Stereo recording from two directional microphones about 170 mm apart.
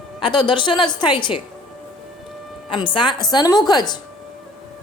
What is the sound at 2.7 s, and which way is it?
A woman's voice, 30° left (ahead or behind).